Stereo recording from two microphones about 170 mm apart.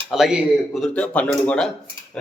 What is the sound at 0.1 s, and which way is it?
Speech, 5° right (ahead or behind).